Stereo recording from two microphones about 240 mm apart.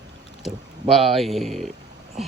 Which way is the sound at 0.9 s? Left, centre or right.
Centre.